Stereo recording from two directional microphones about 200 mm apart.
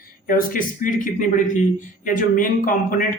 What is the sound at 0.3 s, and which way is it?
Speech, 45° left (ahead or behind).